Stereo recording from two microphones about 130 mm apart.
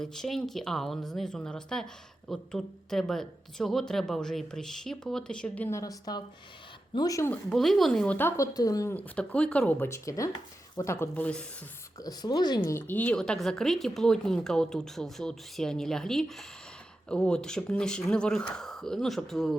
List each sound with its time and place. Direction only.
0.0 s speech: 5° left (ahead or behind)
5.7 s speech: 25° left (ahead or behind)
7.3 s speech: centre (ahead or behind)
8.4 s speech: 25° left (ahead or behind)
9.0 s speech: 10° left (ahead or behind)
11.9 s speech: 30° left (ahead or behind)
12.6 s speech: 15° left (ahead or behind); by 19.5 s centre (ahead or behind)